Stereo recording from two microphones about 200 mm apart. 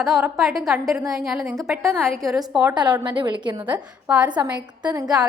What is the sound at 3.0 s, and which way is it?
Speech, 25° right (ahead or behind).